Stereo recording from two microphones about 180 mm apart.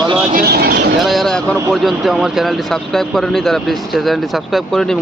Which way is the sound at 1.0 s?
Centre (ahead or behind).